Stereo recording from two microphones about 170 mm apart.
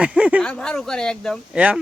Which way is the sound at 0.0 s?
5° right (ahead or behind).